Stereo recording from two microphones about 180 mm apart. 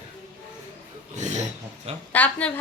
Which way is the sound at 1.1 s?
40° right (ahead or behind).